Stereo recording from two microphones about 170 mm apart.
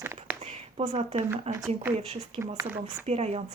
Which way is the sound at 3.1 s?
40° right (ahead or behind).